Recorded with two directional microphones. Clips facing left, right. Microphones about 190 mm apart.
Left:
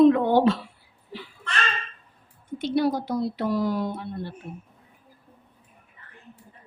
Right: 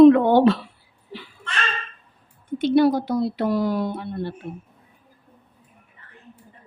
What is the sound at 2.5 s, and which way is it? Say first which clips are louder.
Speech: right 6 dB; 65° right (ahead or behind).